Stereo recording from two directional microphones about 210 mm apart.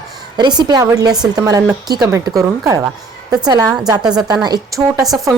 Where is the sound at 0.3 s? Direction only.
20° right (ahead or behind).